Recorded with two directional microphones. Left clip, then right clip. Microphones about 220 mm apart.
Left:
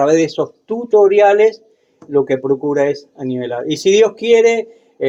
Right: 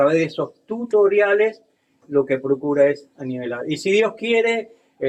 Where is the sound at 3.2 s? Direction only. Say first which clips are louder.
Left 6 dB; 45° left (ahead or behind).